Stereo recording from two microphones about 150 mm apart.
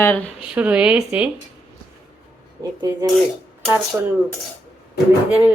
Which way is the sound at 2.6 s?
25° right (ahead or behind).